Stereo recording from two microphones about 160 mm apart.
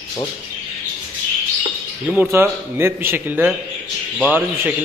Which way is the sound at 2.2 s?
15° right (ahead or behind).